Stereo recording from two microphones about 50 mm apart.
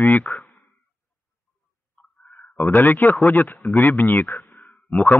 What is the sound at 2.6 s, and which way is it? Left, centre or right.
Speech, left.